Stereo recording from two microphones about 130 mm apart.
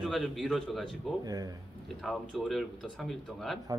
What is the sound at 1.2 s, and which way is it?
Speech, 30° right (ahead or behind).